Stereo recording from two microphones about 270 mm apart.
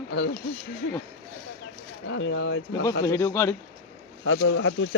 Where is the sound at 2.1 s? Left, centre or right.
Left.